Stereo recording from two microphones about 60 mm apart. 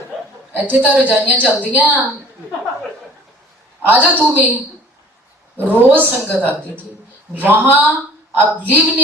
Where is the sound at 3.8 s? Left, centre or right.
Right.